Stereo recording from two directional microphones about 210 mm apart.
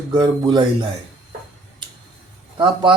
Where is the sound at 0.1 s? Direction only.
20° right (ahead or behind).